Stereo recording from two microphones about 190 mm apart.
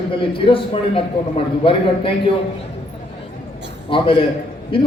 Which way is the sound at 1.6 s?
30° left (ahead or behind).